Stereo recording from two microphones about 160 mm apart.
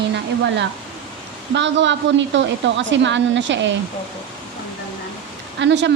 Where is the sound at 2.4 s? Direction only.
90° right.